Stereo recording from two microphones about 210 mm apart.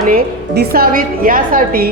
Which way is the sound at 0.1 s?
45° right (ahead or behind).